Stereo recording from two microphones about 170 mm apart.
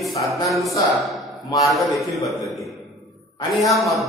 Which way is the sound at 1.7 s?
Centre (ahead or behind).